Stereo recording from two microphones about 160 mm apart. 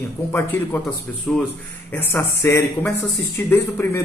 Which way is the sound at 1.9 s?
15° left (ahead or behind).